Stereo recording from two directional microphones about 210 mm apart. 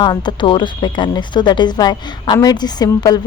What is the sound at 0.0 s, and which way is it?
Speech, 20° left (ahead or behind).